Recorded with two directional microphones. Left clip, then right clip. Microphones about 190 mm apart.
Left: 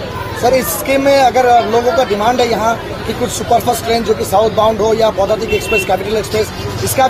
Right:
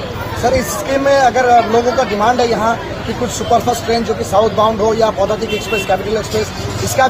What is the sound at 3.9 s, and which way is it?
Speech, 55° left (ahead or behind).